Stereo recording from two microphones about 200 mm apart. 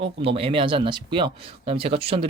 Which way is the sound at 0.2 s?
30° right (ahead or behind).